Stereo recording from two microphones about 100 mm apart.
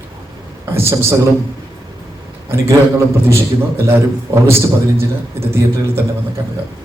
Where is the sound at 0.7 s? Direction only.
25° right (ahead or behind).